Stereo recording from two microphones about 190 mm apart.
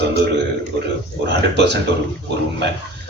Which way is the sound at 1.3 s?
65° right (ahead or behind).